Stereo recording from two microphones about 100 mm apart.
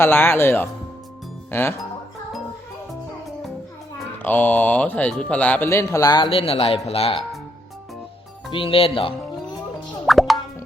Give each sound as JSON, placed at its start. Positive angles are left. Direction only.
{"t": 0.0, "sound": "speech", "side_deg": 25}
{"t": 4.2, "sound": "speech", "side_deg": 15}
{"t": 5.6, "sound": "speech", "side_deg": 30}
{"t": 6.3, "sound": "speech", "side_deg": 75}
{"t": 8.5, "sound": "speech", "side_deg": 65}
{"t": 10.1, "sound": "plop", "side_deg": 0}